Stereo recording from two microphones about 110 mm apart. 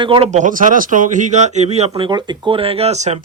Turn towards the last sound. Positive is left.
turn(degrees=-90)